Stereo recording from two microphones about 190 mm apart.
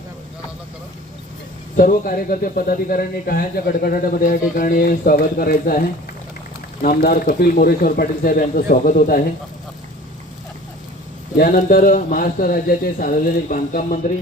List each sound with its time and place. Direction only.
1.7 s speech: 45° left (ahead or behind)
6.8 s speech: 50° left (ahead or behind)
11.3 s speech: 50° left (ahead or behind)